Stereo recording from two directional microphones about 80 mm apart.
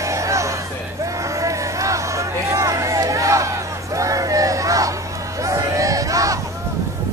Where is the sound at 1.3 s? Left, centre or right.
Right.